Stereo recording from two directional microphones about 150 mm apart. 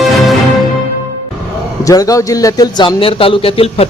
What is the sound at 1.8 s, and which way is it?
A man's voice, 25° left (ahead or behind).